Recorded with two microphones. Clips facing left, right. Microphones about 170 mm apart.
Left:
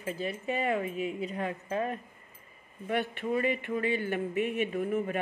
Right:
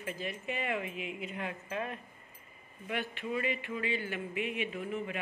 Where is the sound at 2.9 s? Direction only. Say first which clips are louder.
Left 6 dB; 45° left (ahead or behind).